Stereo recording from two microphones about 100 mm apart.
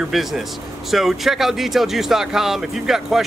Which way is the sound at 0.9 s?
Centre (ahead or behind).